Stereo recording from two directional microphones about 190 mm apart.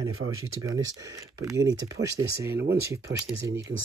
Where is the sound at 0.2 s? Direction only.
70° right (ahead or behind).